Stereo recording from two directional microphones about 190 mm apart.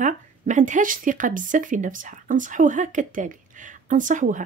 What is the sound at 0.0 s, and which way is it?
Speech, 40° right (ahead or behind).